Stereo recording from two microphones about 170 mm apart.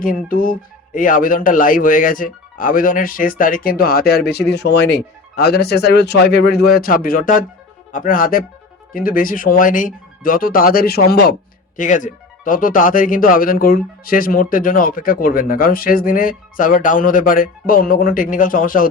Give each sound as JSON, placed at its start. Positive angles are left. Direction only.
{"t": 0.0, "sound": "speech", "side_deg": 55}
{"t": 11.8, "sound": "speech", "side_deg": 50}